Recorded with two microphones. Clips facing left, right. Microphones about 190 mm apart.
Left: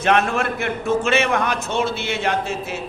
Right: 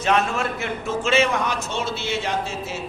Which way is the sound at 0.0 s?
60° left (ahead or behind).